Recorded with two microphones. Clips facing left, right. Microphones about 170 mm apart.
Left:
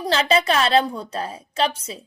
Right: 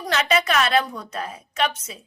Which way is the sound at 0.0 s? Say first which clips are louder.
Left 3 dB; 30° left (ahead or behind).